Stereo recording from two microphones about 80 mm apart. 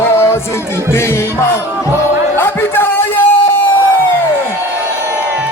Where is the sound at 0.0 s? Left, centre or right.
Left.